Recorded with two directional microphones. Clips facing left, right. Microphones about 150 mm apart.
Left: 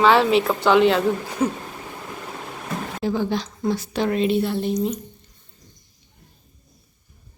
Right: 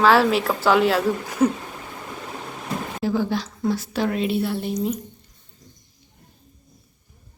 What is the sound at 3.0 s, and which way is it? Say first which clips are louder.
A woman's voice: even; 5° right (ahead or behind).